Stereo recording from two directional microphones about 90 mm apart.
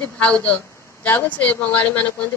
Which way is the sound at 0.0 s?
15° left (ahead or behind).